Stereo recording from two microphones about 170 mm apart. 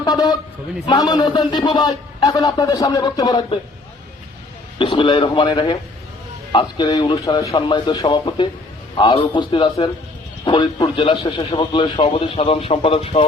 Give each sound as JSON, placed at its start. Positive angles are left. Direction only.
{"t": 0.0, "sound": "a man's voice", "side_deg": 25}
{"t": 4.8, "sound": "a man's voice", "side_deg": 30}